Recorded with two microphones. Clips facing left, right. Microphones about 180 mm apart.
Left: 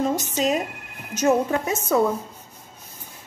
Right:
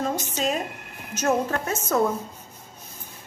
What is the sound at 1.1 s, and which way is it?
Speech, 15° left (ahead or behind).